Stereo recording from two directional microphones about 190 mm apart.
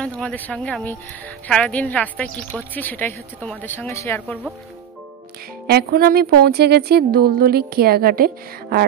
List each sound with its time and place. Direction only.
0.0 s a woman's voice: 5° left (ahead or behind)
4.3 s speech: centre (ahead or behind)
5.7 s speech: 55° right (ahead or behind)